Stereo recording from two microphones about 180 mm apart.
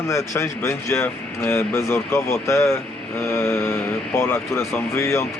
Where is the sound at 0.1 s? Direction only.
15° left (ahead or behind).